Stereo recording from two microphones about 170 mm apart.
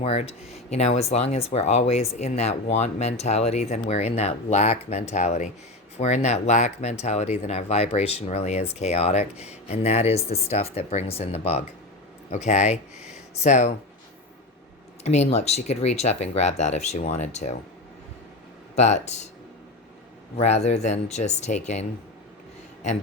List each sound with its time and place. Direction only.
0.0 s speech: 40° left (ahead or behind)
15.0 s speech: 40° left (ahead or behind)
18.8 s speech: 40° left (ahead or behind)
20.3 s speech: 40° left (ahead or behind)